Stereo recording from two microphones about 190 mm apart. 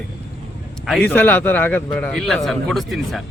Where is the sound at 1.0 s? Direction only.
10° left (ahead or behind).